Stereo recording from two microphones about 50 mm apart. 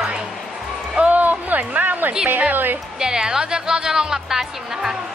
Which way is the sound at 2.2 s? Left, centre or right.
Right.